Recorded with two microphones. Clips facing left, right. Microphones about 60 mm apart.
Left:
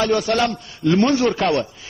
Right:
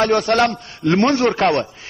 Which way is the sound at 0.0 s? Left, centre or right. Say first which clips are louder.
Right 3 dB; right.